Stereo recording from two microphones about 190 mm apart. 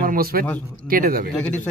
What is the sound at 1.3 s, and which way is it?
Speech, 5° left (ahead or behind).